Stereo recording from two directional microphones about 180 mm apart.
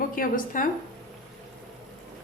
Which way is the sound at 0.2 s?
50° left (ahead or behind).